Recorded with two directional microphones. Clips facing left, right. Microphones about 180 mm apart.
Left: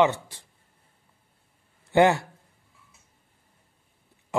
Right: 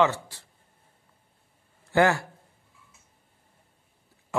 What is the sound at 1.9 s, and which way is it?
Speech, 20° left (ahead or behind).